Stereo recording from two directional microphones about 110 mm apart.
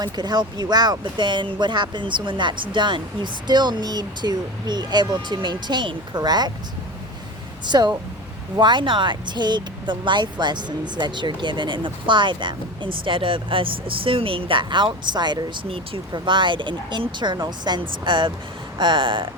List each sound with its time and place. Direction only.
0.0 s speech: 40° right (ahead or behind)
7.6 s speech: 40° right (ahead or behind)